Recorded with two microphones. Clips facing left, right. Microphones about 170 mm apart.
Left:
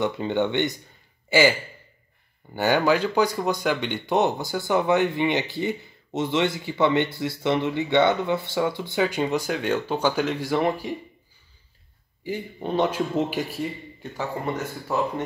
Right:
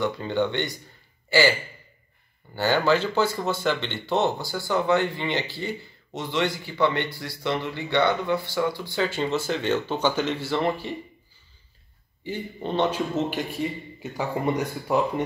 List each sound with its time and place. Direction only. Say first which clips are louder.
0.0 s speech: left 1 dB; 20° left (ahead or behind)
2.5 s speech: left 1 dB; 15° left (ahead or behind)
12.2 s speech: left 1 dB; 10° left (ahead or behind)
14.0 s speech: right 3 dB; 15° right (ahead or behind)